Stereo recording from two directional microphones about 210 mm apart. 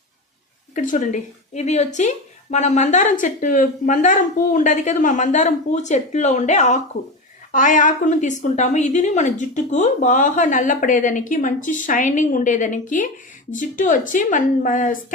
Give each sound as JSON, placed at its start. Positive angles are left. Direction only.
{"t": 0.8, "sound": "speech", "side_deg": 35}